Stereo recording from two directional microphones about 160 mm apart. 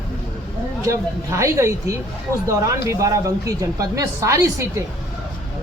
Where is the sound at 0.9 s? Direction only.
20° right (ahead or behind).